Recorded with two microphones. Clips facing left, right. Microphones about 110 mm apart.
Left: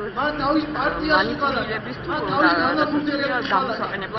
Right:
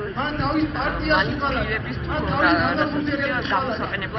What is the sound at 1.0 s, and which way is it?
A man's voice, 15° left (ahead or behind).